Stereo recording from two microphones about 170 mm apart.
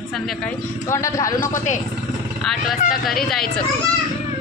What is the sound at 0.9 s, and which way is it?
Speech, 20° left (ahead or behind).